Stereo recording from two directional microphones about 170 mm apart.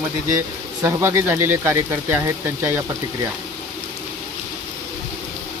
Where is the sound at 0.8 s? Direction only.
15° right (ahead or behind).